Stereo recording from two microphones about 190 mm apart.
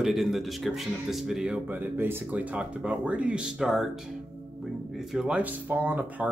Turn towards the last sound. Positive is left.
turn(degrees=-10)  # may be behind; listen again after turning